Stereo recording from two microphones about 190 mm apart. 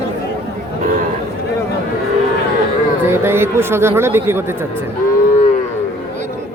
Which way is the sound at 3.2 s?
10° right (ahead or behind).